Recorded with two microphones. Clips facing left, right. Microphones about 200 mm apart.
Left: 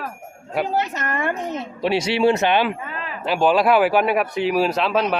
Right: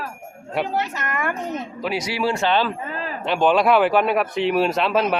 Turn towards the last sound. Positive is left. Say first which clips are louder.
# even
turn(degrees=0)  # may be behind; listen again after turning